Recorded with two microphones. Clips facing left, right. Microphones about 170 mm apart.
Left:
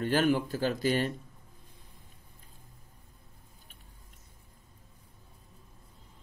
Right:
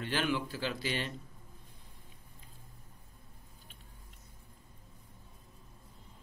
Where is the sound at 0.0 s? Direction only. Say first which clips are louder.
Left 7 dB; 45° left (ahead or behind).